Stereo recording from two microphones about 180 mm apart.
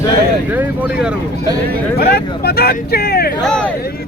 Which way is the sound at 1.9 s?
60° left (ahead or behind).